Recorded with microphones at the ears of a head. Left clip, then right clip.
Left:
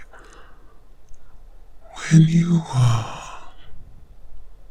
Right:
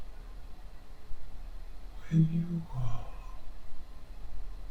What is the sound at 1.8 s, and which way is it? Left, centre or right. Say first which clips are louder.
Gasp: left 14 dB; left.